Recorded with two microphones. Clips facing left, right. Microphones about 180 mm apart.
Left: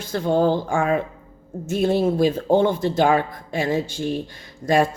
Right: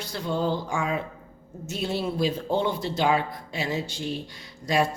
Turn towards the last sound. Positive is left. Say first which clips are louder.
# left 6 dB
turn(degrees=50)  # may be behind; listen again after turning